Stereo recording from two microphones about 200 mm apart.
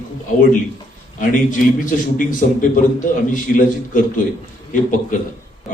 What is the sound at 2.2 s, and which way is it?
A man's voice, 40° left (ahead or behind).